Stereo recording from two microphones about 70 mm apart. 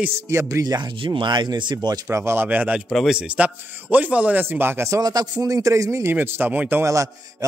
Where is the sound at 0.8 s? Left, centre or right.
Right.